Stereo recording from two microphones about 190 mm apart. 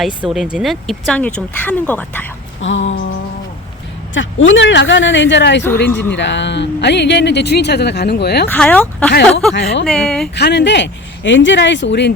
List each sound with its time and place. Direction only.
0.0 s speech: 5° right (ahead or behind)
2.6 s a sound: 80° left
4.1 s speech: 90° left; by 5.6 s 65° left (ahead or behind)
5.9 s speech: 10° left (ahead or behind)
6.1 s speech: 70° left (ahead or behind)
8.4 s speech: 5° left (ahead or behind)
9.6 s speech: 65° left (ahead or behind)
9.8 s speech: centre (ahead or behind)
10.3 s speech: 65° left (ahead or behind)